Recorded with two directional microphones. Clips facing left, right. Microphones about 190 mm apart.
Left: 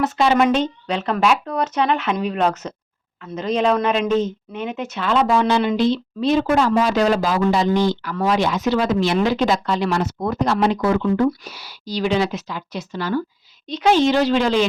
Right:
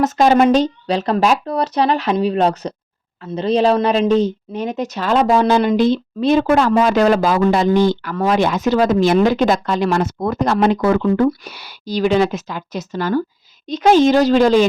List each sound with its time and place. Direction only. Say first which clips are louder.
0.0 s speech: right 4 dB; 40° right (ahead or behind)